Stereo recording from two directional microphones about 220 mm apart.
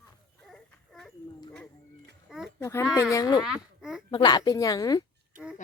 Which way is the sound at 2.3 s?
5° right (ahead or behind).